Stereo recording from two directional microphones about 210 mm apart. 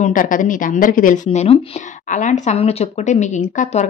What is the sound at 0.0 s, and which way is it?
Speech, 40° left (ahead or behind).